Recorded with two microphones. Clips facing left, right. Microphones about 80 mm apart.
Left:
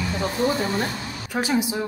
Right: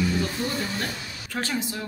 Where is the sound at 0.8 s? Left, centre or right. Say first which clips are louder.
Left 4 dB; centre.